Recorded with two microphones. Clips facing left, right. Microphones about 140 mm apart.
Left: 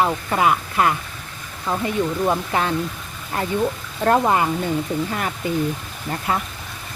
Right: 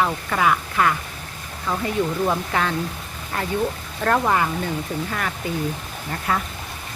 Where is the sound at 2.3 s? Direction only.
25° left (ahead or behind).